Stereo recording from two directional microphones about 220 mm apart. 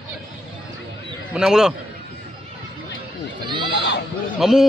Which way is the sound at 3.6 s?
50° left (ahead or behind).